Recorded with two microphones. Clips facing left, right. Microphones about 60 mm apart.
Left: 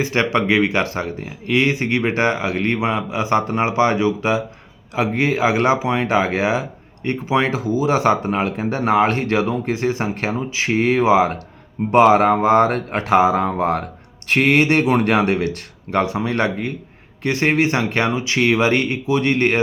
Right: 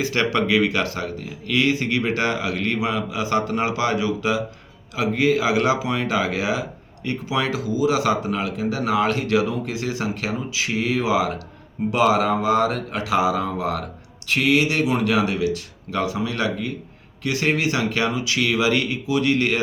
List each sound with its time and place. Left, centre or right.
0.0 s speech: left